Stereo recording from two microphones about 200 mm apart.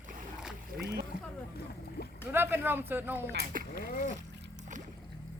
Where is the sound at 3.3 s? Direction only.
50° right (ahead or behind).